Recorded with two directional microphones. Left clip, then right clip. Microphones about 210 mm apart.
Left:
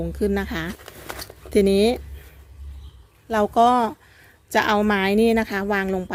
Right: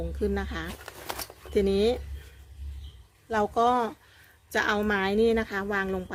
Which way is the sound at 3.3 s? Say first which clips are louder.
Left 7 dB; 40° left (ahead or behind).